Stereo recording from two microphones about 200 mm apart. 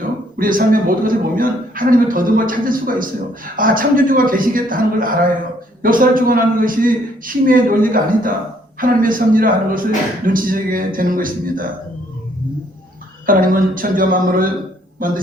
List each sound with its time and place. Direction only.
0.3 s a woman's voice: 45° right (ahead or behind)
13.2 s a woman's voice: 45° right (ahead or behind)